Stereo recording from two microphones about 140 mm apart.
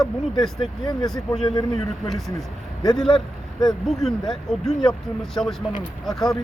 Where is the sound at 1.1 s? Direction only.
5° left (ahead or behind).